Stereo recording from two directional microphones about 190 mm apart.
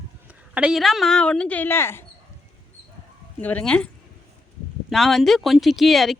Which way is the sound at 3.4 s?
10° left (ahead or behind).